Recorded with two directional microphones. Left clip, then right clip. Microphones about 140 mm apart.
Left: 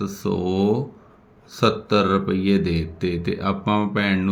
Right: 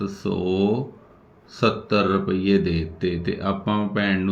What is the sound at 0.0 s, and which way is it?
Speech, 45° left (ahead or behind).